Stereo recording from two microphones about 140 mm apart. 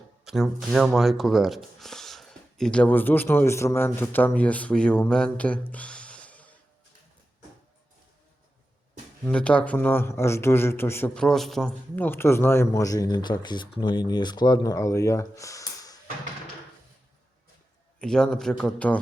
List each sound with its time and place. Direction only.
0.3 s speech: centre (ahead or behind)
9.2 s a man's voice: 10° left (ahead or behind)
11.9 s speech: 15° left (ahead or behind)
18.0 s a man's voice: 5° left (ahead or behind)